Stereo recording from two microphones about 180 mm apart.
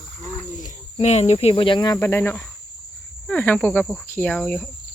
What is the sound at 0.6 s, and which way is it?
Speech, 40° left (ahead or behind).